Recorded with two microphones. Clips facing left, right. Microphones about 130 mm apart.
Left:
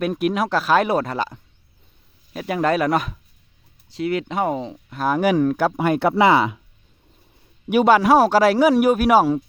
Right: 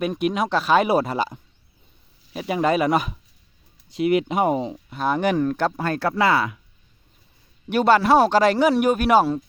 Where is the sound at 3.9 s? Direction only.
15° right (ahead or behind).